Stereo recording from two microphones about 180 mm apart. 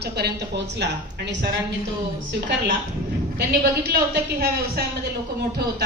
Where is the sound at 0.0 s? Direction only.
65° right (ahead or behind).